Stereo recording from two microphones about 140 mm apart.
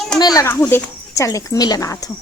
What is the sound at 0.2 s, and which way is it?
Speech, 30° left (ahead or behind).